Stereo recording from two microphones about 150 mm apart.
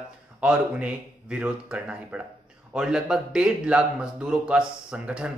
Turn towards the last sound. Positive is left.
turn(degrees=-5)  # may be behind; listen again after turning